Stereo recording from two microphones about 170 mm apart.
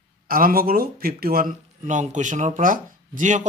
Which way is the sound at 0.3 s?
60° right (ahead or behind).